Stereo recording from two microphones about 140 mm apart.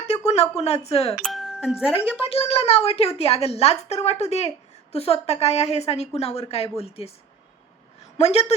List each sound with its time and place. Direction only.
0.5 s a woman's voice: 50° left (ahead or behind)
1.2 s speech: centre (ahead or behind)
2.2 s a woman's voice: 45° left (ahead or behind)
8.2 s a woman's voice: 50° left (ahead or behind)